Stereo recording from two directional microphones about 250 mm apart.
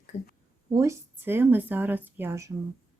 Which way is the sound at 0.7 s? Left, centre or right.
Centre.